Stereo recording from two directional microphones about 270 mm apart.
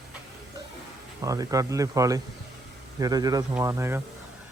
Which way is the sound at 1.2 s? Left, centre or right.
Centre.